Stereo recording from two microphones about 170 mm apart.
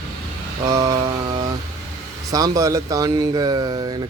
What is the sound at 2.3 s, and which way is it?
Speech, 20° right (ahead or behind).